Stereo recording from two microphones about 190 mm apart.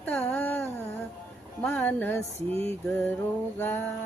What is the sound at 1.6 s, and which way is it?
Female singing, 10° left (ahead or behind).